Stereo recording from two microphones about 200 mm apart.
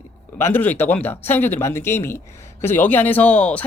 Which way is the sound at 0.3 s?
10° left (ahead or behind).